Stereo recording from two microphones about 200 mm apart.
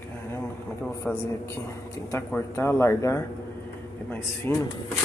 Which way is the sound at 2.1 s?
10° left (ahead or behind).